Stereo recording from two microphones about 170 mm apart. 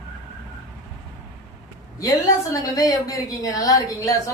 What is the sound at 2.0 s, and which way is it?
A woman's voice, 20° left (ahead or behind).